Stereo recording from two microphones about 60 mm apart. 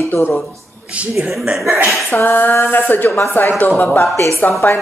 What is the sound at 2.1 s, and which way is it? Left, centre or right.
Speech, left.